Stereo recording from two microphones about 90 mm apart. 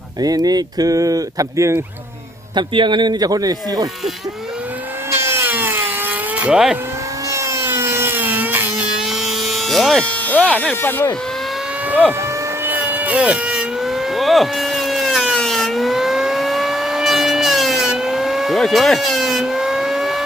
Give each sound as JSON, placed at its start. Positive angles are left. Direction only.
{"t": 0.2, "sound": "speech", "side_deg": -45}
{"t": 2.6, "sound": "speech", "side_deg": -60}
{"t": 5.1, "sound": "a sound", "side_deg": -25}
{"t": 7.3, "sound": "a sound", "side_deg": -35}
{"t": 9.0, "sound": "a sound", "side_deg": -5}
{"t": 10.1, "sound": "speech", "side_deg": 15}
{"t": 11.9, "sound": "vehicle", "side_deg": -15}
{"t": 12.6, "sound": "mosquito", "side_deg": -20}
{"t": 13.8, "sound": "vehicle", "side_deg": 0}
{"t": 15.4, "sound": "siren", "side_deg": 5}